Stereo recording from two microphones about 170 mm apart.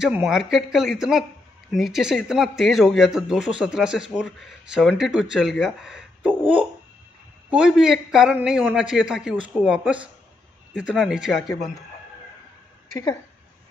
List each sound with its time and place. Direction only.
0.0 s speech: 5° right (ahead or behind)
7.4 s speech: 5° right (ahead or behind)